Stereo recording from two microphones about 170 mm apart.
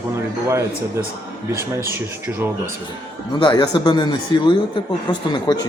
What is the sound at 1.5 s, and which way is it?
Speech, 15° right (ahead or behind).